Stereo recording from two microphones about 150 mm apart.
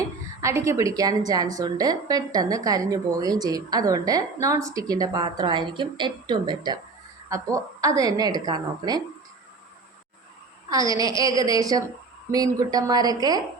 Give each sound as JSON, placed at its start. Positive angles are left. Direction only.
{"t": 0.0, "sound": "a woman's voice", "side_deg": -20}
{"t": 10.7, "sound": "a woman's voice", "side_deg": -25}